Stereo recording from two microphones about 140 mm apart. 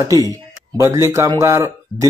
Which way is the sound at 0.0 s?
25° right (ahead or behind).